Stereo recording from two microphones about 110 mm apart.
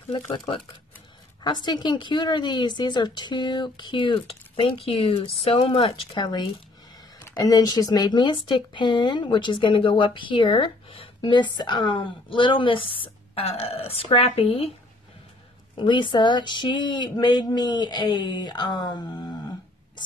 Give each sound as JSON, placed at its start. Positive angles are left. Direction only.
{"t": 0.1, "sound": "speech", "side_deg": 55}
{"t": 1.4, "sound": "speech", "side_deg": 40}
{"t": 15.8, "sound": "speech", "side_deg": 45}